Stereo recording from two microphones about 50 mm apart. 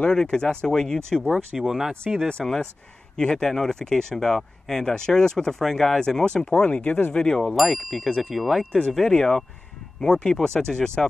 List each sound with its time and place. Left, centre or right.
0.2 s speech: centre
1.3 s speech: centre
2.2 s speech: centre
7.2 s speech: centre
7.5 s speech: centre
8.9 s speech: centre